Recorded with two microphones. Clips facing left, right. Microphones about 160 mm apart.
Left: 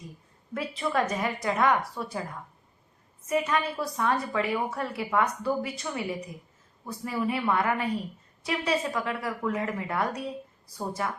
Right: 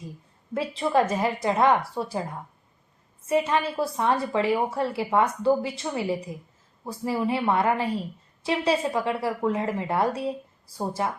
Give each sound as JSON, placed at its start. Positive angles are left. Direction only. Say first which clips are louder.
{"t": 0.5, "sound": "a woman's voice", "louder": "right 5 dB", "side_deg": -30}